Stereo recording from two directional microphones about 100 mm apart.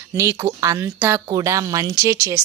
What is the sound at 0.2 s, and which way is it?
Speech, 30° right (ahead or behind).